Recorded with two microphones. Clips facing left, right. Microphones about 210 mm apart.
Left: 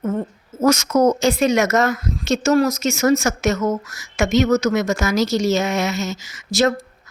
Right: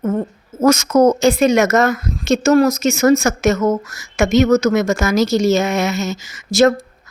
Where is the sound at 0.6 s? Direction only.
50° right (ahead or behind).